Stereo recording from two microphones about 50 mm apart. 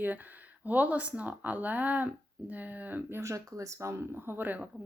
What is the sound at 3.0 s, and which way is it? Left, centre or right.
Speech, right.